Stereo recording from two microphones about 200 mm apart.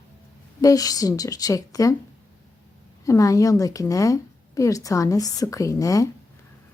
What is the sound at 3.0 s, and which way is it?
A woman's voice, 15° left (ahead or behind).